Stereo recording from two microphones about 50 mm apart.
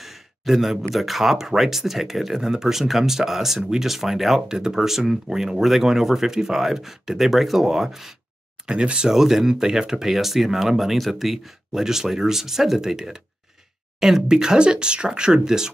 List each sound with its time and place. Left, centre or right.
0.0 s speech: centre
8.6 s speech: centre
9.1 s speech: centre